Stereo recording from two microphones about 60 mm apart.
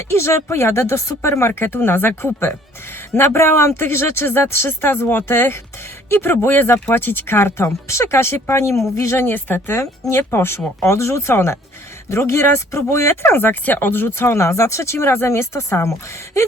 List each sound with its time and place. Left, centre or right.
0.1 s speech: left
13.3 s speech: left
14.3 s speech: left